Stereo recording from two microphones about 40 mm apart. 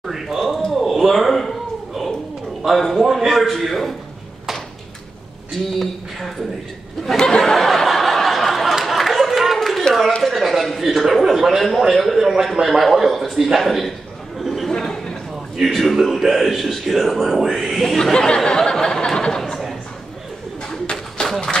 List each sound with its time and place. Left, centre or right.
0.0 s a sound: centre
2.6 s a man's voice: centre
5.8 s speech: centre
7.2 s a sound: centre
8.7 s chatter: centre
10.2 s a man's voice: centre
14.4 s chatter: centre
14.7 s chatter: centre
15.5 s a man's voice: centre
18.1 s speech: centre
19.4 s a sound: centre
20.9 s a sound: centre